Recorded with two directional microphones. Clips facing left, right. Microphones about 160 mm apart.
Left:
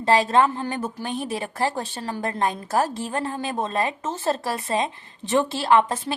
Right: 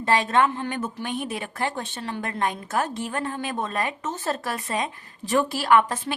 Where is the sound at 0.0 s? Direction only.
30° left (ahead or behind).